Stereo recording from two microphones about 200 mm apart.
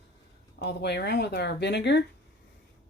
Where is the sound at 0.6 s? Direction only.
55° left (ahead or behind).